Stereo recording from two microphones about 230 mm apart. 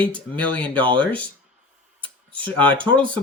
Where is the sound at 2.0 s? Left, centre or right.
Right.